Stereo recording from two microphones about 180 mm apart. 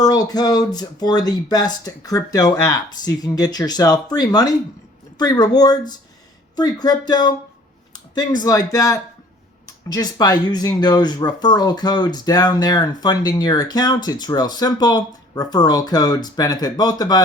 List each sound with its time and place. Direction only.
0.0 s speech: 20° left (ahead or behind)